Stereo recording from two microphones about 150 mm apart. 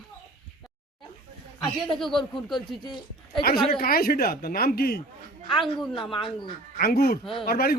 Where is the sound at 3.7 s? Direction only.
80° left.